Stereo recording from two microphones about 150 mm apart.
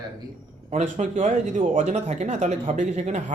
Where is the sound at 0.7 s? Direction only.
50° right (ahead or behind).